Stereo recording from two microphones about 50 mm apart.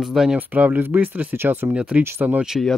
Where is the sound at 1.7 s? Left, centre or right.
Right.